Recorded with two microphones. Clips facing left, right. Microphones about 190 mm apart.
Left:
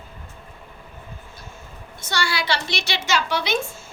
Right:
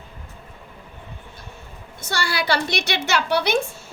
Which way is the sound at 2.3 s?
55° right (ahead or behind).